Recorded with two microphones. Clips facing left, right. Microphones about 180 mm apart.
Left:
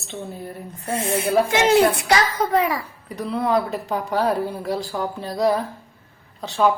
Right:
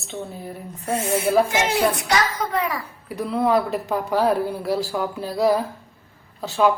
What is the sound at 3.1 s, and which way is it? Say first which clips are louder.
A woman's voice: right 2 dB; centre (ahead or behind).